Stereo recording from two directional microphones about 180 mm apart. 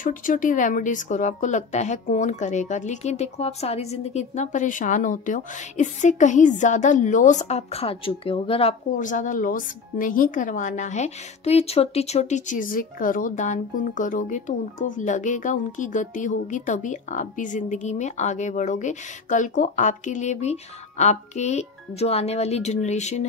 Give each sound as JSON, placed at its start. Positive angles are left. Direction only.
{"t": 0.0, "sound": "speech", "side_deg": 50}
{"t": 8.9, "sound": "a woman's voice", "side_deg": 45}